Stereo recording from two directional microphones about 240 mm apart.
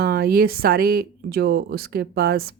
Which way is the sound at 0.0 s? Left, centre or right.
Right.